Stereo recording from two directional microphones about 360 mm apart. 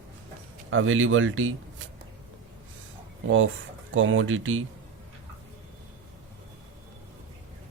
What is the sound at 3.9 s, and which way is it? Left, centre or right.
Speech, right.